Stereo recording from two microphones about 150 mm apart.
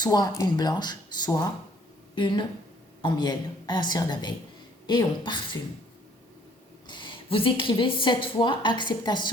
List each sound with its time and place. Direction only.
0.0 s a woman's voice: 25° left (ahead or behind)
6.8 s a woman's voice: 30° left (ahead or behind)